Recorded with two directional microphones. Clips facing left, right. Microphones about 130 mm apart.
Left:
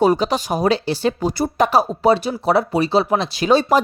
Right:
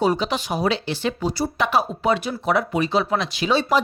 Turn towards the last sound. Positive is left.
turn(degrees=45)  # may be behind; listen again after turning